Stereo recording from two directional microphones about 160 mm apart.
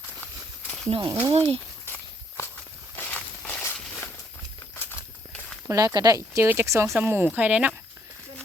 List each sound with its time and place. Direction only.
0.9 s speech: 35° right (ahead or behind)
2.9 s walk: 15° left (ahead or behind)
4.9 s a sound: 5° left (ahead or behind)
5.6 s speech: 20° right (ahead or behind)